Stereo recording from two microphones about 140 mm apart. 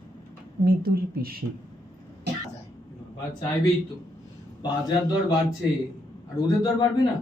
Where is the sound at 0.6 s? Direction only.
90° right.